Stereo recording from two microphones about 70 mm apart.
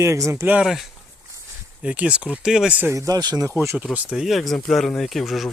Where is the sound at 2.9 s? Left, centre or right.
Right.